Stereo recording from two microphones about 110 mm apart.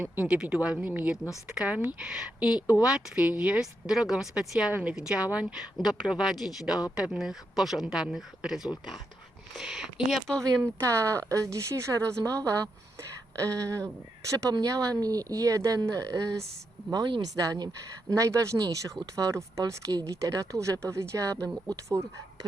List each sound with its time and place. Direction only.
0.0 s speech: 10° right (ahead or behind)
2.6 s speech: 30° left (ahead or behind)
2.8 s speech: 10° right (ahead or behind)
5.7 s speech: centre (ahead or behind)
10.6 s speech: 25° right (ahead or behind)
13.4 s speech: 30° right (ahead or behind)